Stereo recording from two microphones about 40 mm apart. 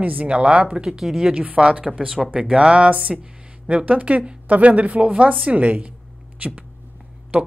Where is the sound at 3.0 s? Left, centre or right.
Centre.